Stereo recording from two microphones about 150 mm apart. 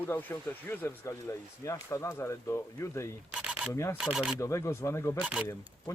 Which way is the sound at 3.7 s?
20° left (ahead or behind).